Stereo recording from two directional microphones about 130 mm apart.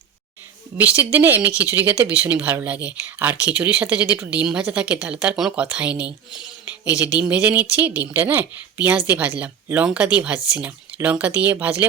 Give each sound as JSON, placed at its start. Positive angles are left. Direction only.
{"t": 0.8, "sound": "speech", "side_deg": -15}
{"t": 6.8, "sound": "speech", "side_deg": 30}
{"t": 7.2, "sound": "speech", "side_deg": -10}